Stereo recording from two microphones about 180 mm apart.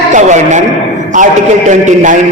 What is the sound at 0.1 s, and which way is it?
A man's voice, 40° right (ahead or behind).